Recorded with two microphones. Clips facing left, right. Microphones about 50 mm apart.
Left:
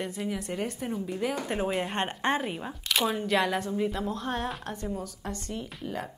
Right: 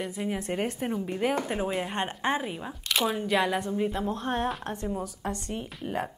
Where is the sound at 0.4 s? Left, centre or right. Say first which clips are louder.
Right 3 dB; right.